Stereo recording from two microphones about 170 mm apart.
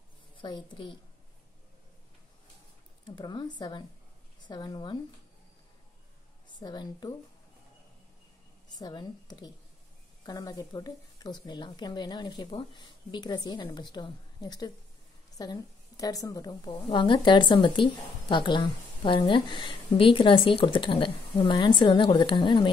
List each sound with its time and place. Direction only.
0.4 s a woman's voice: 25° left (ahead or behind)
3.1 s a woman's voice: 25° left (ahead or behind)
6.6 s a woman's voice: 25° left (ahead or behind)
8.6 s a woman's voice: 25° left (ahead or behind)